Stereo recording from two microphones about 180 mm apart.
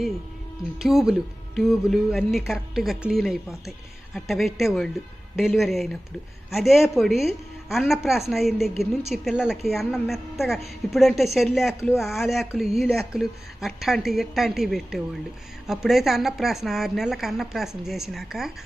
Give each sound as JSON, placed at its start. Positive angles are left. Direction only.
{"t": 0.8, "sound": "speech", "side_deg": 0}